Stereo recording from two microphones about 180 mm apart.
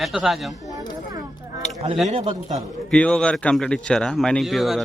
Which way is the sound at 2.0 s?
40° right (ahead or behind).